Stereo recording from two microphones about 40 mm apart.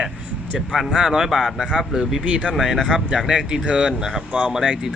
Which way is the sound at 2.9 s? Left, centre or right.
Right.